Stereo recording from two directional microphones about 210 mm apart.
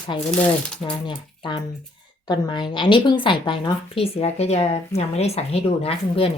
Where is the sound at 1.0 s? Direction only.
20° left (ahead or behind).